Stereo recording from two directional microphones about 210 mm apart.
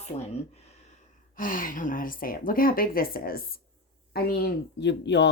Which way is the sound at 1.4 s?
40° left (ahead or behind).